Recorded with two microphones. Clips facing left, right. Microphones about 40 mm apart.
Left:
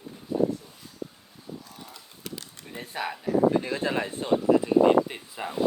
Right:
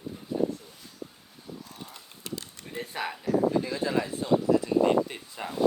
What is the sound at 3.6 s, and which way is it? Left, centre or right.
Speech, left.